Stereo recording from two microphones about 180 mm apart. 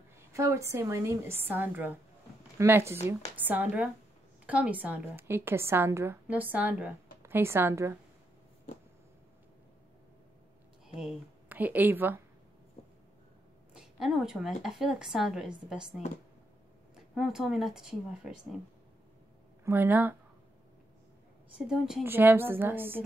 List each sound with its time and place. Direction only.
0.3 s a woman's voice: 15° right (ahead or behind)
11.0 s speech: 5° right (ahead or behind)
13.7 s speech: centre (ahead or behind)
16.9 s speech: centre (ahead or behind)
19.6 s a woman's voice: 10° right (ahead or behind)
21.6 s a woman's voice: 5° right (ahead or behind)